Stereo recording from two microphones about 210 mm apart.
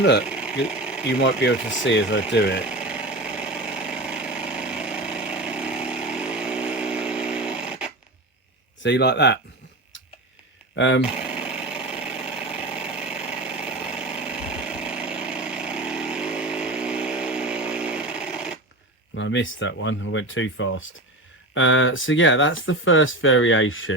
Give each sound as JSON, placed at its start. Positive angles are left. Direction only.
{"t": 0.3, "sound": "sewing machine", "side_deg": -5}
{"t": 1.2, "sound": "speech", "side_deg": 60}
{"t": 2.6, "sound": "a sound", "side_deg": -5}
{"t": 8.8, "sound": "speech", "side_deg": 55}
{"t": 10.8, "sound": "speech", "side_deg": 60}
{"t": 11.0, "sound": "sewing machine", "side_deg": -5}
{"t": 12.6, "sound": "engine", "side_deg": -5}
{"t": 19.1, "sound": "speech", "side_deg": 60}